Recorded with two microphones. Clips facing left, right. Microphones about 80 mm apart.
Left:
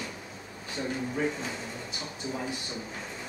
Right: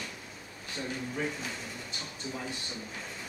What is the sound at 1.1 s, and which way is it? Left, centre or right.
Speech, centre.